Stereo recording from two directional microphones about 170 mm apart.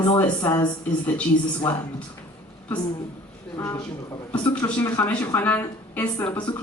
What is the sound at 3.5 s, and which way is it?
Speech, 20° left (ahead or behind).